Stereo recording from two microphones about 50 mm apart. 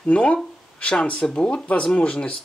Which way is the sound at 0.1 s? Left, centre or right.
Left.